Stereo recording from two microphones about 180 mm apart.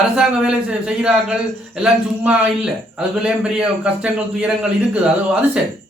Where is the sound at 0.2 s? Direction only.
5° right (ahead or behind).